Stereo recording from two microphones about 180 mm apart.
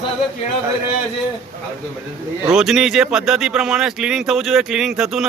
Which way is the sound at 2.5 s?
5° right (ahead or behind).